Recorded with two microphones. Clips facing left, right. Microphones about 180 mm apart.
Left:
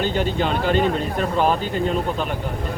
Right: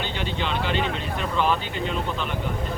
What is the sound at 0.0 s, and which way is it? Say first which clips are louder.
Speech: left 7 dB; 45° left (ahead or behind).